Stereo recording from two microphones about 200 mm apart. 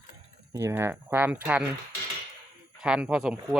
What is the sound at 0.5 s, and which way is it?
Speech, 15° right (ahead or behind).